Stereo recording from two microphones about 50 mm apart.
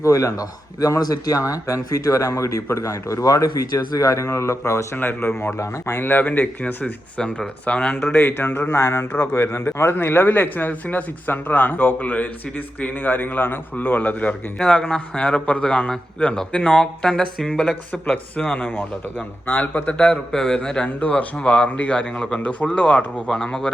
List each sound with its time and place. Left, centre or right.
0.0 s speech: left
1.4 s speech: left
4.1 s speech: left
4.9 s a man's voice: left
5.5 s speech: left
6.1 s speech: left
7.2 s a man's voice: left
8.1 s a man's voice: left
8.7 s a man's voice: left
11.9 s speech: left
14.6 s a man's voice: centre
17.9 s a man's voice: left
19.5 s a man's voice: left; by 20.8 s centre
20.8 s a man's voice: left; by 23.7 s centre